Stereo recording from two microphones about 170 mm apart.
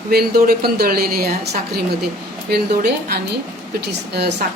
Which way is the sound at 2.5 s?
70° right (ahead or behind).